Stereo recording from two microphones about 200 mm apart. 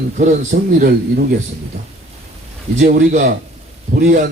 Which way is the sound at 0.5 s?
50° right (ahead or behind).